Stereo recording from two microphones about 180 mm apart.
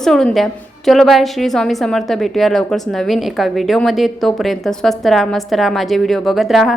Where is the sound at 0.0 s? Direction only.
5° left (ahead or behind).